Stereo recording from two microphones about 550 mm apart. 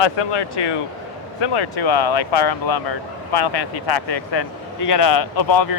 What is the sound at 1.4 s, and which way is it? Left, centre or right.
Speech, left.